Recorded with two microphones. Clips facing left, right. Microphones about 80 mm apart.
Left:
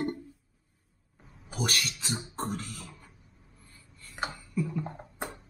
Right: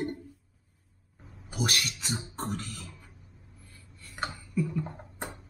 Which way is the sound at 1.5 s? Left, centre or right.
Centre.